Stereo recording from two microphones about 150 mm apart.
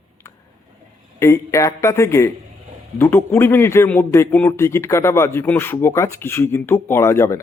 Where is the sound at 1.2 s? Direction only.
20° left (ahead or behind).